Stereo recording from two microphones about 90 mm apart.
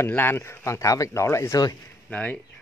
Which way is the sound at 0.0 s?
25° left (ahead or behind).